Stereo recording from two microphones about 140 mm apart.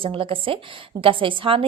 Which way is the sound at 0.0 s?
40° right (ahead or behind).